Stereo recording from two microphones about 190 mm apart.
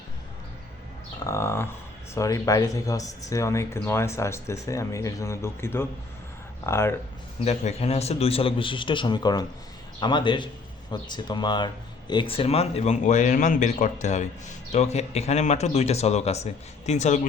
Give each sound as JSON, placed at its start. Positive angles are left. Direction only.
{"t": 1.2, "sound": "speech", "side_deg": 15}
{"t": 7.4, "sound": "a man's voice", "side_deg": 35}